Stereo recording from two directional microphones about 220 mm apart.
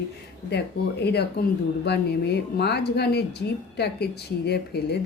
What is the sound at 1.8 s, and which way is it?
Speech, 50° left (ahead or behind).